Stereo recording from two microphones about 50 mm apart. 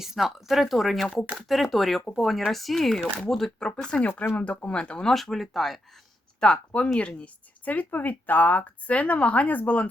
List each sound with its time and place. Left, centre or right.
0.0 s speech: centre
4.4 s speech: left
5.0 s speech: centre
6.4 s speech: centre
7.6 s speech: left